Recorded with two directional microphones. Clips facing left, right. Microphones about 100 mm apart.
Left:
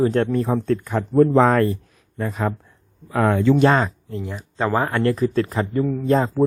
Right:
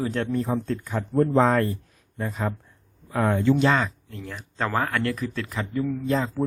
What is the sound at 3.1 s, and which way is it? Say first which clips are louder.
Speech: left 4 dB; 90° left.